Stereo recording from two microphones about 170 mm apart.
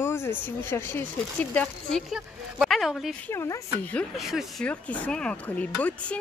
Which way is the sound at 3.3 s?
15° left (ahead or behind).